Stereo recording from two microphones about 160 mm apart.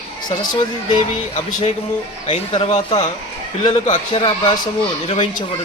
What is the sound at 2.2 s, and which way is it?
Speech, 35° left (ahead or behind).